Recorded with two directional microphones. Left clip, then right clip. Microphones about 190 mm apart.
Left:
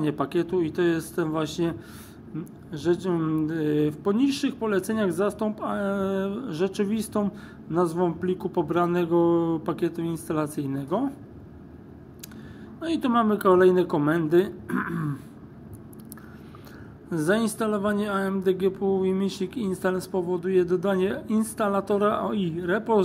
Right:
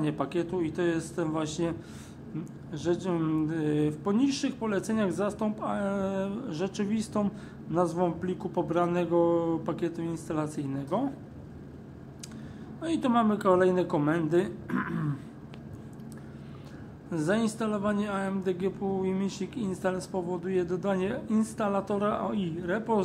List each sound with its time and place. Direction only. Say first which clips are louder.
0.0 s speech: left 4 dB; 15° left (ahead or behind)
12.8 s speech: left 3 dB; 10° left (ahead or behind)
17.1 s speech: left 4 dB; 20° left (ahead or behind)